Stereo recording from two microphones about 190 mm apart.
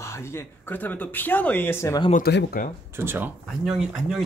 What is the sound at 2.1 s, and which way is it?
Speech, 55° left (ahead or behind).